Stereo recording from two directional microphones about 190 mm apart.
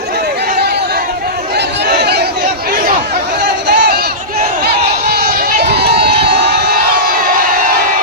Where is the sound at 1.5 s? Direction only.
60° right (ahead or behind).